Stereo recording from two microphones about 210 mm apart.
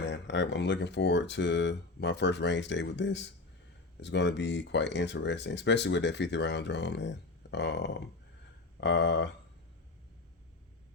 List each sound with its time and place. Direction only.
0.0 s speech: 55° left (ahead or behind)